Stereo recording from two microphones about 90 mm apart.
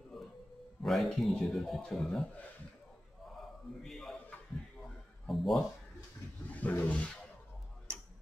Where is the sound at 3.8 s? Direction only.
Centre (ahead or behind).